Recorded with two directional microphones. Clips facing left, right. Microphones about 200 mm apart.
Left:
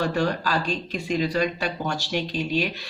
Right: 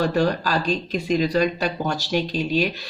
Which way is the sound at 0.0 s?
40° right (ahead or behind).